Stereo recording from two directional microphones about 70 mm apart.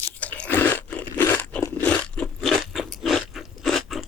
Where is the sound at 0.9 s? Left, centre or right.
Left.